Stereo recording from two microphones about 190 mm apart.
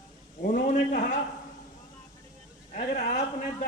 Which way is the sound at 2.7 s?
40° left (ahead or behind).